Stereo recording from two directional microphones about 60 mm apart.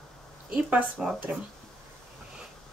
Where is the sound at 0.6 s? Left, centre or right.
Right.